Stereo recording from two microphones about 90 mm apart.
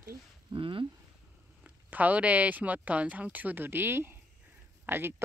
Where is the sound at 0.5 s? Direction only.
70° right (ahead or behind).